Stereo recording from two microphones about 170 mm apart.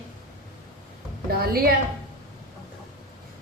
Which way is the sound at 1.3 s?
65° right (ahead or behind).